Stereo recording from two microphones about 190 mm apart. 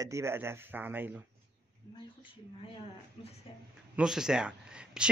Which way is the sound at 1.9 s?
25° left (ahead or behind).